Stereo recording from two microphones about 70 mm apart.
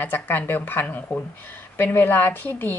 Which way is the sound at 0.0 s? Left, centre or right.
Left.